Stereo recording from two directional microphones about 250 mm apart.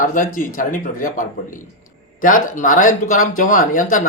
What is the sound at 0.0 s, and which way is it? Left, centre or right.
Speech, left.